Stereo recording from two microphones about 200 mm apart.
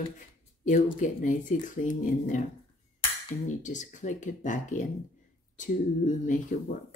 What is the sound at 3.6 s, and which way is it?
Speech, 40° left (ahead or behind).